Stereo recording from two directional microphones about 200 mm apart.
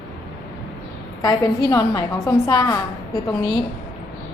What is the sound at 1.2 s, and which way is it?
A woman's voice, 15° left (ahead or behind).